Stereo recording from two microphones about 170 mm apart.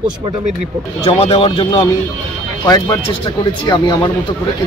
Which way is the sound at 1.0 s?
30° left (ahead or behind).